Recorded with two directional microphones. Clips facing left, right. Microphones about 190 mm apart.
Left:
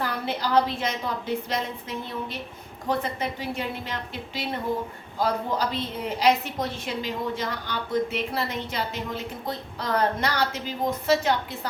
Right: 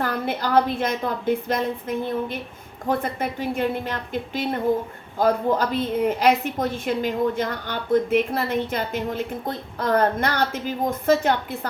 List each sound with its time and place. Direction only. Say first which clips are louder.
0.0 s a woman's voice: right 3 dB; 50° right (ahead or behind)